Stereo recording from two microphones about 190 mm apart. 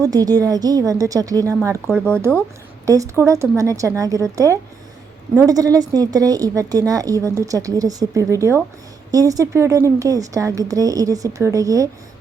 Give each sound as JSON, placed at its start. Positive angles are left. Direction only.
{"t": 0.0, "sound": "a woman's voice", "side_deg": -20}
{"t": 1.9, "sound": "speech", "side_deg": 5}
{"t": 2.8, "sound": "a woman's voice", "side_deg": -15}